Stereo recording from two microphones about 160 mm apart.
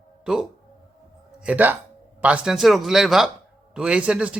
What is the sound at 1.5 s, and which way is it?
Speech, 10° right (ahead or behind).